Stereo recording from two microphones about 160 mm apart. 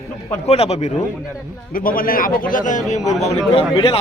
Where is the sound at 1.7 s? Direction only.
65° left (ahead or behind).